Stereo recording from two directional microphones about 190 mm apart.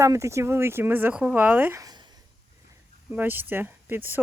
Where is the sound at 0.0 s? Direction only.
15° right (ahead or behind).